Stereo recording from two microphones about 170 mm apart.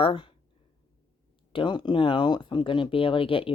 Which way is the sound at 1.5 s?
30° left (ahead or behind).